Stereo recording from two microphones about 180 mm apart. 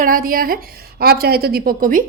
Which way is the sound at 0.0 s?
50° right (ahead or behind).